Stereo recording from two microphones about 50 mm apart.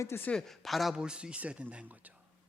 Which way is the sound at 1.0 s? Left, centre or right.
Centre.